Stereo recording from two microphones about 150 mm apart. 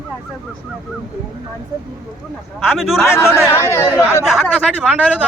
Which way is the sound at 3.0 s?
15° left (ahead or behind).